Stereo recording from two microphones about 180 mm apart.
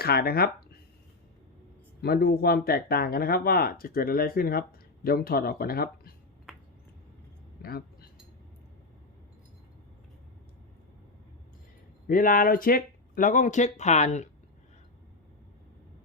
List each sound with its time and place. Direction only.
0.0 s speech: 60° left (ahead or behind)
2.0 s speech: 60° left (ahead or behind)
7.6 s speech: 55° left (ahead or behind)
12.0 s speech: 50° left (ahead or behind)